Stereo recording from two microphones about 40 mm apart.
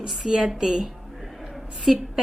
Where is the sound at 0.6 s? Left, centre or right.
Centre.